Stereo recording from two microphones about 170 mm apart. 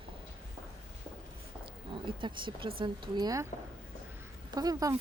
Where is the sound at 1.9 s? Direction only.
30° right (ahead or behind).